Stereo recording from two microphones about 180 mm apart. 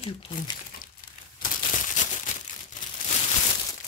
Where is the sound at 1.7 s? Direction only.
45° left (ahead or behind).